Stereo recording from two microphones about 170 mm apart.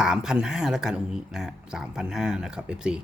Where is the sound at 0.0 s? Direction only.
5° right (ahead or behind).